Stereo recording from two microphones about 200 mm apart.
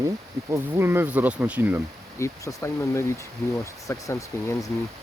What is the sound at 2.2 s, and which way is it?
Speech, 15° left (ahead or behind).